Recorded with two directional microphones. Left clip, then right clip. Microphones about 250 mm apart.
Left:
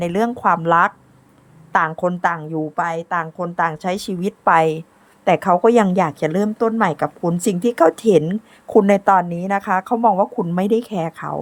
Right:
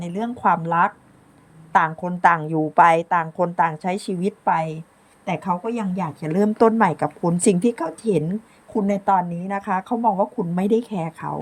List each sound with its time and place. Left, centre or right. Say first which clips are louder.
0.0 s a woman's voice: left 4 dB; centre